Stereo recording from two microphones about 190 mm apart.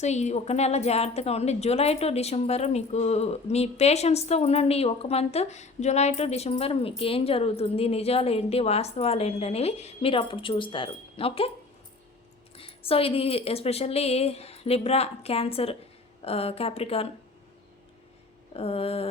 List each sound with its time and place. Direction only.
0.0 s a woman's voice: 35° left (ahead or behind)
12.5 s a woman's voice: 30° left (ahead or behind)
18.5 s a woman's voice: 30° left (ahead or behind)